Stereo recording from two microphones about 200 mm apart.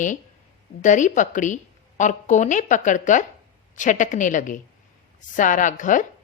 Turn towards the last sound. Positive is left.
turn(degrees=40)  # may be behind; listen again after turning